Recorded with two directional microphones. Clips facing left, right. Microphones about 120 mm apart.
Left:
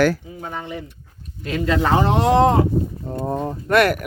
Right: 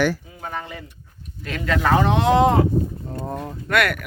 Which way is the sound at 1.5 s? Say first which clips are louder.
Left 2 dB; 30° left (ahead or behind).